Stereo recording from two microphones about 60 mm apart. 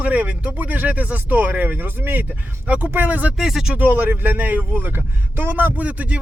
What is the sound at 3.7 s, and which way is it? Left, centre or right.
Speech, right.